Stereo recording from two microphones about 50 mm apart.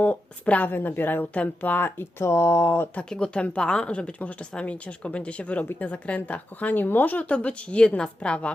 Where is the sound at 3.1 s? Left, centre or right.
Centre.